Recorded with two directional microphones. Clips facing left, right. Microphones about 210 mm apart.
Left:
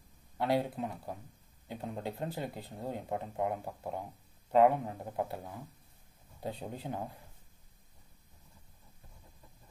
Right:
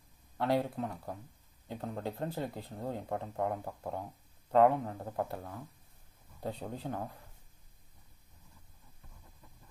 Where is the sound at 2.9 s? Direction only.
15° left (ahead or behind).